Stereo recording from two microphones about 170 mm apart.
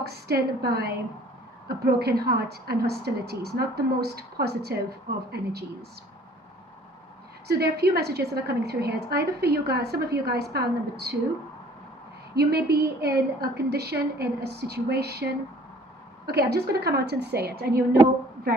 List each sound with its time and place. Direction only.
0.0 s a woman's voice: 70° right (ahead or behind)
7.4 s a woman's voice: 70° right (ahead or behind)
12.4 s a woman's voice: 70° right (ahead or behind)